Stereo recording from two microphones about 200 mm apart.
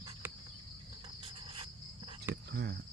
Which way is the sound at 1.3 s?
25° right (ahead or behind).